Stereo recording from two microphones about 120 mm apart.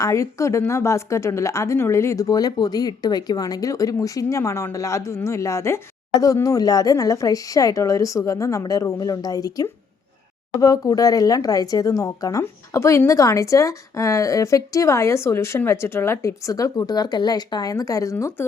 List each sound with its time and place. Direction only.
0.0 s a woman's voice: 25° left (ahead or behind)